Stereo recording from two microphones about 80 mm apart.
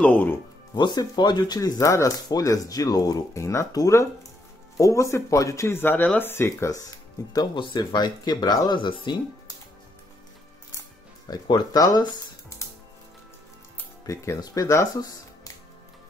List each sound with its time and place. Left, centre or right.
0.7 s speech: left
1.5 s speech: left
2.1 s speech: left
7.5 s speech: left
11.2 s speech: left
14.0 s speech: left
15.0 s music: left